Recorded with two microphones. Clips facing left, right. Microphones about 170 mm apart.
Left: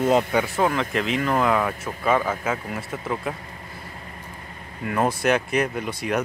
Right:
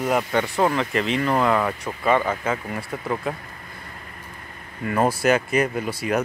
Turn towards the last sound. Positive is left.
turn(degrees=-5)  # may be behind; listen again after turning